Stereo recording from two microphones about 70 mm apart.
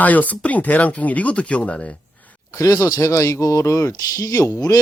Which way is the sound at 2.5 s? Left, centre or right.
Left.